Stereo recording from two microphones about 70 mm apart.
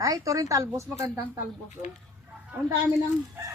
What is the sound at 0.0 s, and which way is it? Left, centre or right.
Speech, right.